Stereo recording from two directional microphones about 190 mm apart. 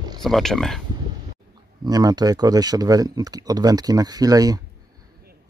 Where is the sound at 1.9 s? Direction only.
20° right (ahead or behind).